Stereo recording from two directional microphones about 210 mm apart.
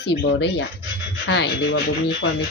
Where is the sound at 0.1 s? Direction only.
55° left (ahead or behind).